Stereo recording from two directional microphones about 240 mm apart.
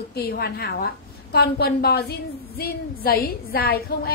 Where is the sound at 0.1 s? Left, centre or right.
Left.